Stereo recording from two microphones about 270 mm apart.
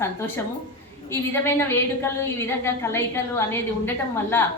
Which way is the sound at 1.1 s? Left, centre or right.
Centre.